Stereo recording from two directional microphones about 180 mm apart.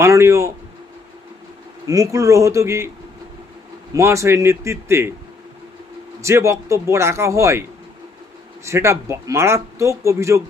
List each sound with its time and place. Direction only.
0.0 s speech: 15° right (ahead or behind)
1.9 s speech: 20° right (ahead or behind)
3.9 s speech: 15° right (ahead or behind)
6.2 s speech: 15° right (ahead or behind)
8.6 s speech: 15° right (ahead or behind)